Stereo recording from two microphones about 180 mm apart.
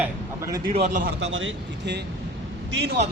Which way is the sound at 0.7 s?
40° right (ahead or behind).